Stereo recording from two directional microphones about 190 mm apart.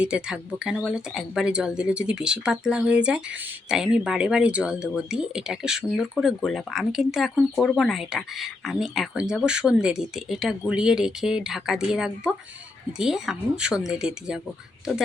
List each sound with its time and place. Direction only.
0.0 s speech: 5° right (ahead or behind)